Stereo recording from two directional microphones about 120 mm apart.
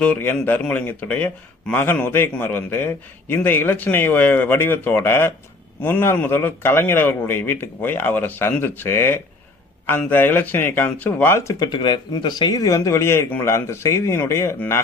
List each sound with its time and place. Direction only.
0.0 s a man's voice: 10° left (ahead or behind)
11.6 s speech: 40° left (ahead or behind); by 14.5 s 25° left (ahead or behind)